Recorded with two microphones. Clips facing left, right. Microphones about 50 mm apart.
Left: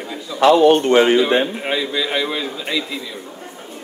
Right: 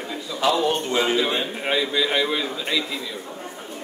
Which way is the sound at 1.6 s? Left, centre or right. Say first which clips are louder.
Left 1 dB; centre.